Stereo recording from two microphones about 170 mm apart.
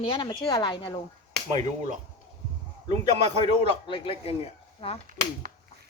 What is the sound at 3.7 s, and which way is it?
Speech, 30° left (ahead or behind).